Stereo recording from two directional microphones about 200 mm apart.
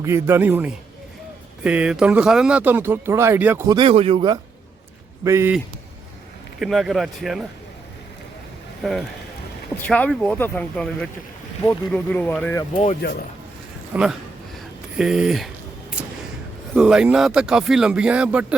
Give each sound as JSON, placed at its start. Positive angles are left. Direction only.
{"t": 0.0, "sound": "speech", "side_deg": -15}
{"t": 5.2, "sound": "speech", "side_deg": -15}
{"t": 6.6, "sound": "speech", "side_deg": 0}
{"t": 8.8, "sound": "speech", "side_deg": 0}
{"t": 13.0, "sound": "speech", "side_deg": 50}
{"t": 13.9, "sound": "speech", "side_deg": -5}
{"t": 16.0, "sound": "a sound", "side_deg": -5}
{"t": 16.7, "sound": "speech", "side_deg": -5}